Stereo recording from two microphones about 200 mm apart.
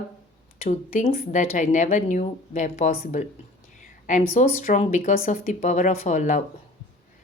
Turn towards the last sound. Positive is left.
turn(degrees=35)  # may be behind; listen again after turning